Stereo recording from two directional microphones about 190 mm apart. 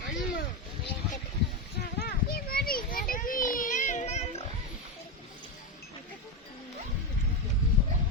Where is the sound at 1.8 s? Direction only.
55° left (ahead or behind); by 4.4 s 35° left (ahead or behind).